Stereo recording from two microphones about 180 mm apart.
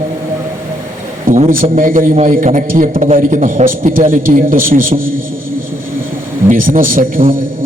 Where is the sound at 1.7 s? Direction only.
50° right (ahead or behind).